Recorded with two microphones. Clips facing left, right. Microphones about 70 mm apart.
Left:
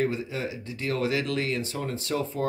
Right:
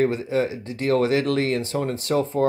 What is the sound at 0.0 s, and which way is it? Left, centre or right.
Speech, right.